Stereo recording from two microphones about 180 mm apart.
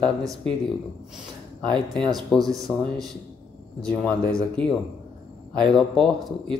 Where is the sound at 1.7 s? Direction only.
5° left (ahead or behind).